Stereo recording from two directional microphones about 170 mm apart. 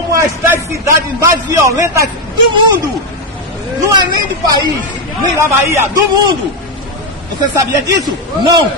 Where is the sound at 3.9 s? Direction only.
25° right (ahead or behind).